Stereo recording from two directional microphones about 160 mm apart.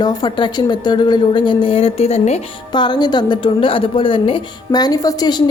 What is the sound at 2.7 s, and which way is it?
A woman's voice, 25° left (ahead or behind).